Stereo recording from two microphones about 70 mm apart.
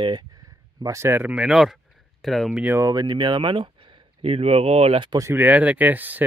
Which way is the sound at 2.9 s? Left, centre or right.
Right.